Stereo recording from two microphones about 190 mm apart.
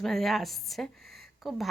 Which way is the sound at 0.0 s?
Centre (ahead or behind).